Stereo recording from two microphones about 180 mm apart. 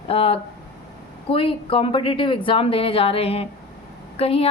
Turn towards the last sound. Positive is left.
turn(degrees=35)  # may be behind; listen again after turning